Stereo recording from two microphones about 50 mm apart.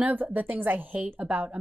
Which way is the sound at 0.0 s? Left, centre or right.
Right.